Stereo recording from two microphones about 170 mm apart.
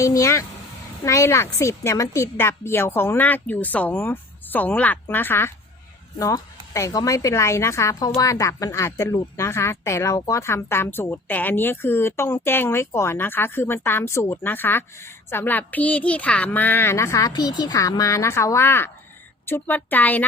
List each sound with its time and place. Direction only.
0.0 s a woman's voice: 20° left (ahead or behind)